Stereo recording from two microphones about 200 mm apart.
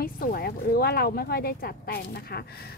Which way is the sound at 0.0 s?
45° left (ahead or behind).